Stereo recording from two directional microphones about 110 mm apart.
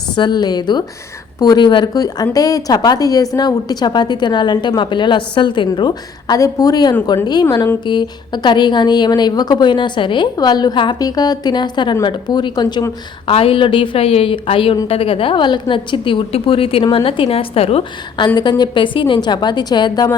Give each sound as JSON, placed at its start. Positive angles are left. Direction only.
{"t": 0.2, "sound": "a woman's voice", "side_deg": 40}
{"t": 13.2, "sound": "a woman's voice", "side_deg": 60}
{"t": 18.3, "sound": "a woman's voice", "side_deg": 40}